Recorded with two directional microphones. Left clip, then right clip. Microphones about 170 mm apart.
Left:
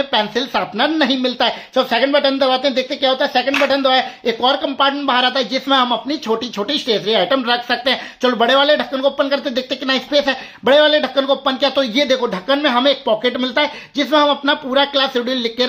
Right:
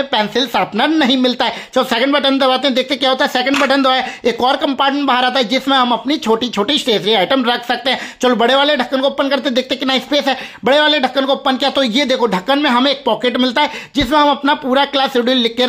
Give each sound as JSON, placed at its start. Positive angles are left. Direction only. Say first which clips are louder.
{"t": 0.1, "sound": "speech", "louder": "right 2 dB", "side_deg": -25}